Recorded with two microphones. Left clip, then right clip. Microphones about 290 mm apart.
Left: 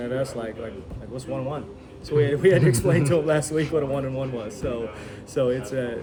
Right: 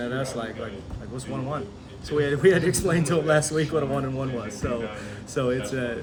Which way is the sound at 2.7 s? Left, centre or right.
Centre.